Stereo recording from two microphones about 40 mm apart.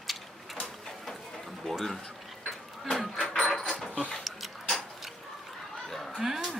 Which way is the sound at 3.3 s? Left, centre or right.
Centre.